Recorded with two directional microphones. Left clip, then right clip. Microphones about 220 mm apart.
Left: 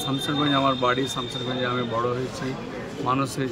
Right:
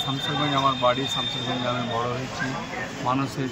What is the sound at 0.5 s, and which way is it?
Speech, 20° left (ahead or behind).